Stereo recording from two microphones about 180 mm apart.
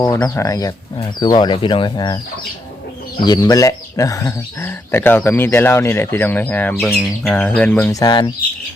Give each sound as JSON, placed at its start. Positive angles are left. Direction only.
{"t": 0.0, "sound": "speech", "side_deg": 15}
{"t": 3.2, "sound": "speech", "side_deg": 25}
{"t": 6.8, "sound": "bird", "side_deg": 0}
{"t": 7.3, "sound": "speech", "side_deg": 10}